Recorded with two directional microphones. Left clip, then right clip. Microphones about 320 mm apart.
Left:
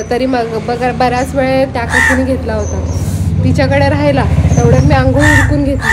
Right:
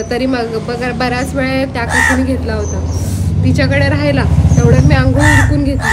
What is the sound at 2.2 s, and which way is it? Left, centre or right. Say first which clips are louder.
A woman's voice: left 2 dB; centre.